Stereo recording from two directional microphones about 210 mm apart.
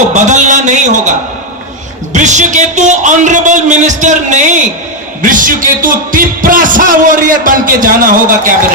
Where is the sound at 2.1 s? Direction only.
35° right (ahead or behind).